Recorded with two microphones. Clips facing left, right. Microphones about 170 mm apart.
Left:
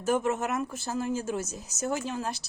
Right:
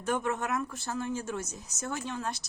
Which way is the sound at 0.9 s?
30° left (ahead or behind).